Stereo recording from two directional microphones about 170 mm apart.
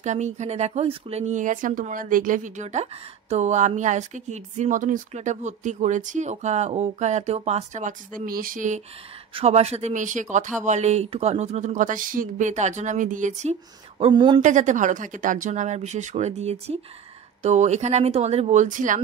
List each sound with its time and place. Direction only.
0.0 s speech: 45° right (ahead or behind)
9.3 s speech: 35° right (ahead or behind)
14.4 s speech: 45° right (ahead or behind)